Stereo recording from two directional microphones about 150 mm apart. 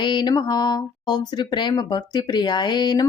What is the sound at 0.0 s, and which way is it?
Speech, 30° left (ahead or behind).